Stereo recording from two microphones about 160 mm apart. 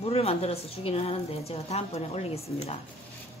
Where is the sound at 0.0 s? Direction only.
40° left (ahead or behind).